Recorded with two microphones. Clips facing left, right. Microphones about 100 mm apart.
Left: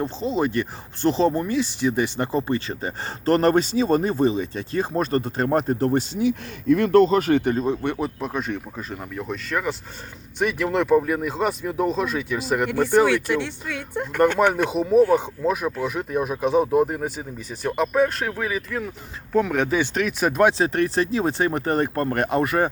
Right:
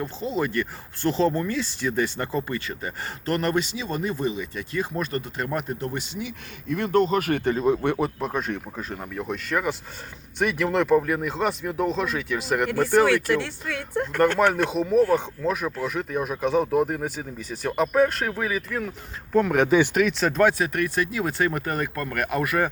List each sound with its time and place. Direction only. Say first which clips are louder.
0.0 s speech: left 3 dB; 20° left (ahead or behind)
7.5 s speech: right 1 dB; 5° right (ahead or behind)
19.6 s speech: right 3 dB; 15° right (ahead or behind)
20.1 s speech: left 5 dB; 10° left (ahead or behind)
20.6 s speech: left 4 dB; 30° left (ahead or behind)